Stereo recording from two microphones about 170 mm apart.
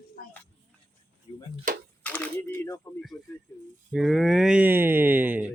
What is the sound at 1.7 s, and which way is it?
Speech, 55° right (ahead or behind).